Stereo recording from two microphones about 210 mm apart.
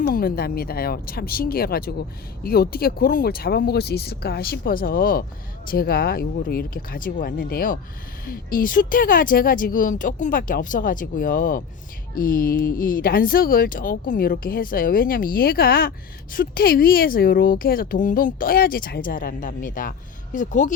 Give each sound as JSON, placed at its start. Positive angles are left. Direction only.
{"t": 0.1, "sound": "speech", "side_deg": 45}